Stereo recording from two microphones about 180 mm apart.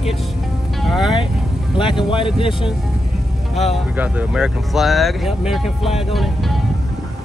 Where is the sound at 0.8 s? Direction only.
Centre (ahead or behind).